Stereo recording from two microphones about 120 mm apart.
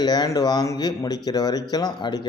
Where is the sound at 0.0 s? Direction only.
35° left (ahead or behind).